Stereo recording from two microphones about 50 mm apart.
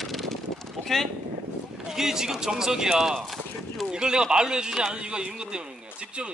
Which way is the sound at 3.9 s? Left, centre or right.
Centre.